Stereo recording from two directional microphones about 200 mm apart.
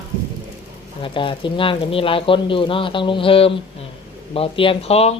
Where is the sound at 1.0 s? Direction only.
25° left (ahead or behind).